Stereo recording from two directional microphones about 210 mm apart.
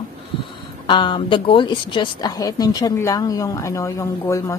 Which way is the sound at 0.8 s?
20° left (ahead or behind).